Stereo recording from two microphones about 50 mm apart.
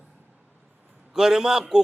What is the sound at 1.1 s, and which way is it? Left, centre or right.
Speech, centre.